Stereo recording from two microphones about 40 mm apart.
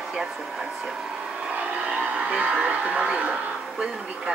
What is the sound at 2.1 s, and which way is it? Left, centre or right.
Speech, right.